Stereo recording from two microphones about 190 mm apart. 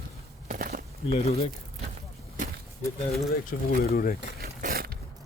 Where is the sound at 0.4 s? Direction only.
40° right (ahead or behind).